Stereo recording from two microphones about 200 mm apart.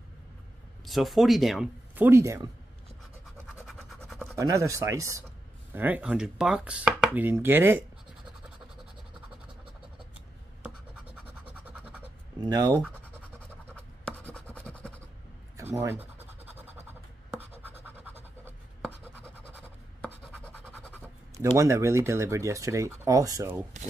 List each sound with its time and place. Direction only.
0.8 s speech: centre (ahead or behind)
3.6 s toothbrush: centre (ahead or behind)
4.4 s speech: 15° right (ahead or behind)
11.5 s scratch: 5° right (ahead or behind)
12.4 s speech: 20° right (ahead or behind)
13.7 s scratch: 5° left (ahead or behind)
15.5 s speech: 15° right (ahead or behind)
16.3 s scratch: 10° right (ahead or behind)
20.2 s scratch: 5° left (ahead or behind)
21.5 s speech: 15° right (ahead or behind)